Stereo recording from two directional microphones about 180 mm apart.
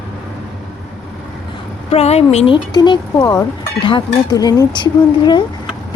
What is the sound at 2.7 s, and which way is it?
Speech, 25° left (ahead or behind).